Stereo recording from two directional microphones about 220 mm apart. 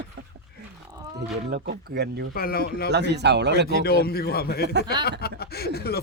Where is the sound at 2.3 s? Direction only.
45° left (ahead or behind).